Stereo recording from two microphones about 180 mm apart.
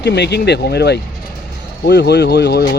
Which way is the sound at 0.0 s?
70° left (ahead or behind).